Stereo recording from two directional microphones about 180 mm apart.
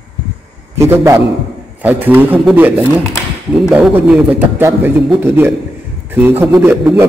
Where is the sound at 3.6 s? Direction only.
5° right (ahead or behind).